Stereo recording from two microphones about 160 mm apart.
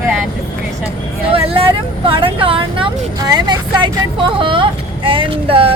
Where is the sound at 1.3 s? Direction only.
35° right (ahead or behind).